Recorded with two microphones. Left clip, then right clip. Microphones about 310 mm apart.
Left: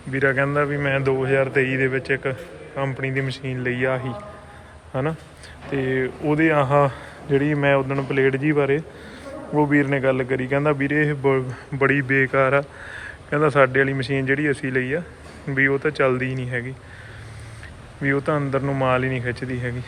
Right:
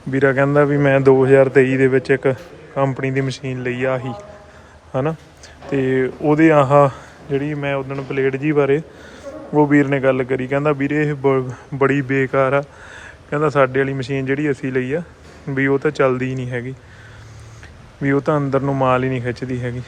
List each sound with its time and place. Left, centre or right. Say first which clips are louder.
0.1 s a man's voice: right 5 dB; centre
18.0 s a man's voice: right 4 dB; centre